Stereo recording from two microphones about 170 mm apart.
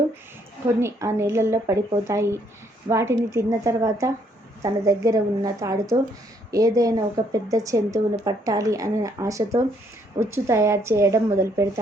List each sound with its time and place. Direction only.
0.8 s a woman's voice: 15° right (ahead or behind)